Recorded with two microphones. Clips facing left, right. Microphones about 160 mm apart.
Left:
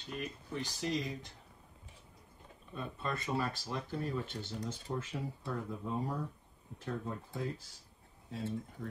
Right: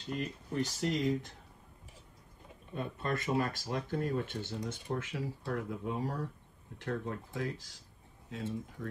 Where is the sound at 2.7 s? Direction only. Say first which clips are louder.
Right 4 dB; 60° right (ahead or behind).